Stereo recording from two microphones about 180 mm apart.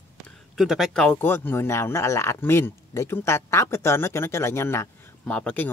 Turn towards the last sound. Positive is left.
turn(degrees=5)  # may be behind; listen again after turning